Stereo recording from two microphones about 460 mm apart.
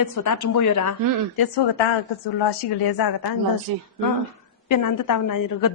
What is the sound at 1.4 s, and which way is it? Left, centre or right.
A woman's voice, left.